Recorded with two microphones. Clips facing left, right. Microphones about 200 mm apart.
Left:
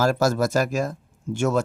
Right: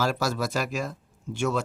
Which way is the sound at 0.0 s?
45° left (ahead or behind).